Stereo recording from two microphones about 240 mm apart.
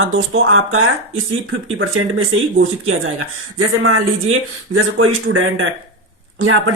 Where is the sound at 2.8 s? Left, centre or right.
Right.